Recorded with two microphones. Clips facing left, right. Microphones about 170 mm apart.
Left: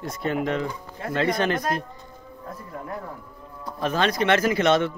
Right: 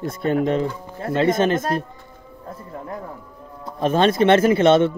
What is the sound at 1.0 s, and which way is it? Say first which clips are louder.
Speech: right 5 dB; 20° right (ahead or behind).